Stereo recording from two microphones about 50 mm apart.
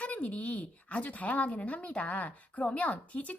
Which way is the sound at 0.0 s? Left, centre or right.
Left.